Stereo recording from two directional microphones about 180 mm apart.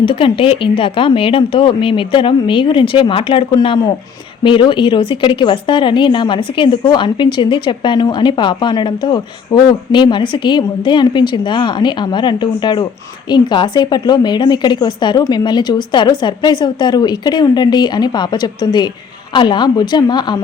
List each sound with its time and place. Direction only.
0.0 s speech: 30° left (ahead or behind)